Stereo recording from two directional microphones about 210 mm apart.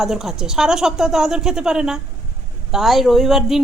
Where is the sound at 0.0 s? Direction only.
Centre (ahead or behind).